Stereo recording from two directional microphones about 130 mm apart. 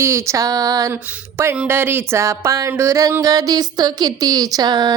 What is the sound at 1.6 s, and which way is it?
Music, 15° right (ahead or behind).